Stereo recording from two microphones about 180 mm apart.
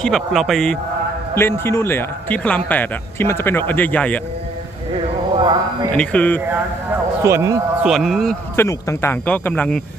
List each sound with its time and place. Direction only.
0.0 s a man's voice: centre (ahead or behind)
1.3 s a man's voice: 15° left (ahead or behind)
5.4 s a sound: 25° right (ahead or behind)
5.9 s a man's voice: 10° left (ahead or behind)
7.2 s speech: 15° right (ahead or behind)
7.8 s a man's voice: centre (ahead or behind)
8.5 s a man's voice: 15° left (ahead or behind)